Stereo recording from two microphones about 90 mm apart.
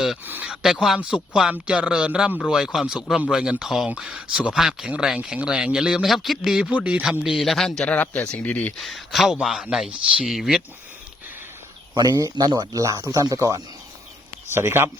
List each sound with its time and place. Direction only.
0.4 s a sound: 5° right (ahead or behind)
0.9 s a man's voice: 10° right (ahead or behind)
7.9 s speech: 15° left (ahead or behind)
8.8 s a man's voice: centre (ahead or behind)
11.9 s speech: 45° right (ahead or behind)
14.5 s speech: 25° right (ahead or behind)